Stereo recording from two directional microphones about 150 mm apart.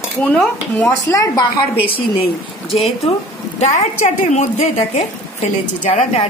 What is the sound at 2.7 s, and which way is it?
Speech, 40° left (ahead or behind).